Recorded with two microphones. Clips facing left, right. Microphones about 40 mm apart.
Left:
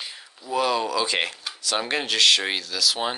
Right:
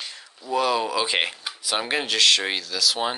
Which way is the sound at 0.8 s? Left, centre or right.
Centre.